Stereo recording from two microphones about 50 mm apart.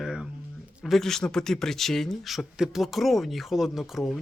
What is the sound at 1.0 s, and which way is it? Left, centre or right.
Speech, centre.